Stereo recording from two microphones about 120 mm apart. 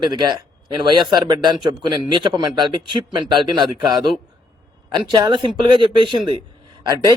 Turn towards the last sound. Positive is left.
turn(degrees=-35)  # may be behind; listen again after turning